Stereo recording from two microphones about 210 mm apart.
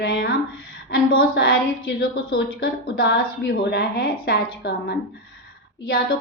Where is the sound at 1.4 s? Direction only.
50° left (ahead or behind).